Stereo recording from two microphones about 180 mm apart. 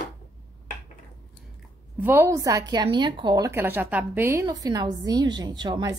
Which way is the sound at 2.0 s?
15° right (ahead or behind).